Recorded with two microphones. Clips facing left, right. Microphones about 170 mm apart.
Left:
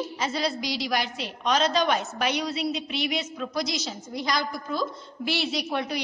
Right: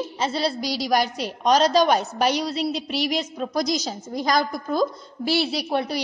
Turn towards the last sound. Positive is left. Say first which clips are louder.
# right 4 dB
turn(degrees=-35)  # may be behind; listen again after turning